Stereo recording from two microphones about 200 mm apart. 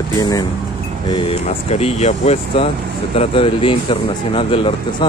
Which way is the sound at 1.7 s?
30° left (ahead or behind).